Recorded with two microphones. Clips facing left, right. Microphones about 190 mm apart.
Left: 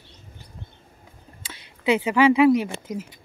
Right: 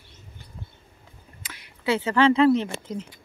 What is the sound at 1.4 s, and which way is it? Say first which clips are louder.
Speech: left 3 dB; 25° left (ahead or behind).